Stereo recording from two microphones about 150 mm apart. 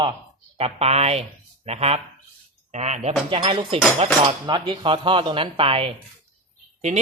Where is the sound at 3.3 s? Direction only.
35° right (ahead or behind).